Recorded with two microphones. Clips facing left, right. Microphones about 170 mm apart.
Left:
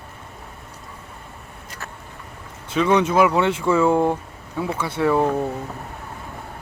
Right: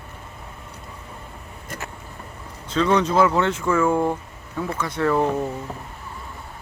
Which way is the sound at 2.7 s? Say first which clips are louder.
Left 1 dB; 10° left (ahead or behind).